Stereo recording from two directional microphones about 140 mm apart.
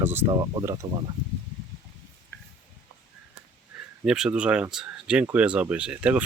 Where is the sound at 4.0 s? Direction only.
5° right (ahead or behind).